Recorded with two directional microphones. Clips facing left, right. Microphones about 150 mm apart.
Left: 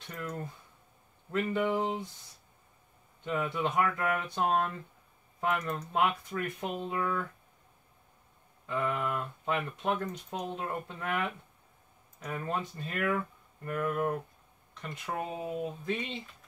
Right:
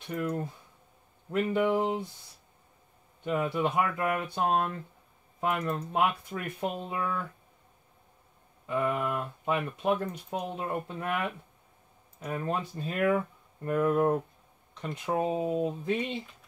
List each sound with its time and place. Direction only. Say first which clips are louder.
0.0 s speech: right 7 dB; 10° right (ahead or behind)
3.5 s speech: right 2 dB; 10° right (ahead or behind)
8.6 s speech: right 3 dB; 10° right (ahead or behind)
12.4 s speech: right 3 dB; 15° right (ahead or behind)
13.8 s speech: right 6 dB; 30° right (ahead or behind)
15.4 s speech: right 6 dB; 35° right (ahead or behind)
15.8 s speech: right 4 dB; 10° right (ahead or behind)